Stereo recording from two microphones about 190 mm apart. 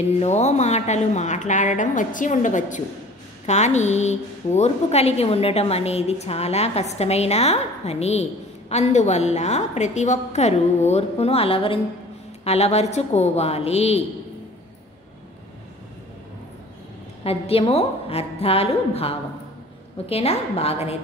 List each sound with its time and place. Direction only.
0.2 s a woman's voice: 35° left (ahead or behind)
17.2 s a woman's voice: 30° left (ahead or behind)